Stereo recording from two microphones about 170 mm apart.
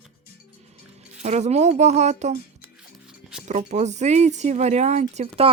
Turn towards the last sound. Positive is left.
turn(degrees=-40)  # may be behind; listen again after turning